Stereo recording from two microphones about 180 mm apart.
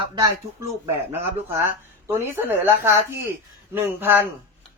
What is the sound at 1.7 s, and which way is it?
Speech, 10° right (ahead or behind).